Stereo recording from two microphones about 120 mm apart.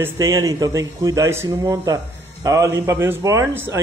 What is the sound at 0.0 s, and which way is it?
A man's voice, 25° right (ahead or behind).